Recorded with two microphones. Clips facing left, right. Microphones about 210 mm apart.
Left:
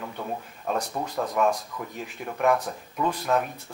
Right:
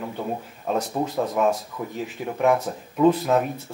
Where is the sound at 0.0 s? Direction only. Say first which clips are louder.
Right 4 dB; 10° right (ahead or behind).